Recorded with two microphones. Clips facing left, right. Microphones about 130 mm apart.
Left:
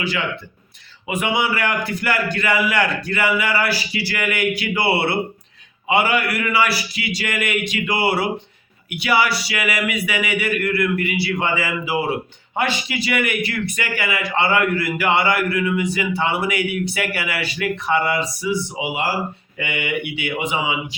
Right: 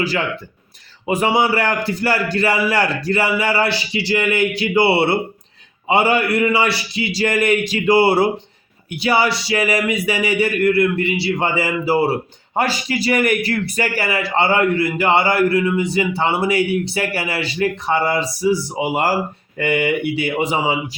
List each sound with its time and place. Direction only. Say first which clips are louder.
0.0 s a man's voice: right 3 dB; 35° right (ahead or behind)